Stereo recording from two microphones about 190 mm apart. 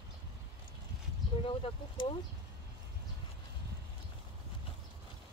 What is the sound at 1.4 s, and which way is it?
Speech, 25° left (ahead or behind).